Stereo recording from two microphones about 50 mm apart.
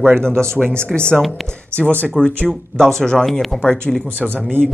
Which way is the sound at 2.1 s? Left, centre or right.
Centre.